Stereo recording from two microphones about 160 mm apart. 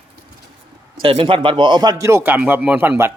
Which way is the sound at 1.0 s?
35° right (ahead or behind).